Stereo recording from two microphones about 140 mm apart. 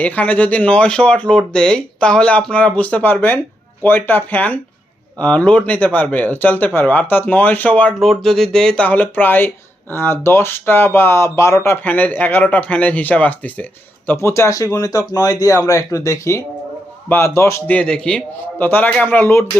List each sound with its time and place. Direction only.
0.0 s a man's voice: 10° left (ahead or behind)
17.7 s speech: 5° left (ahead or behind)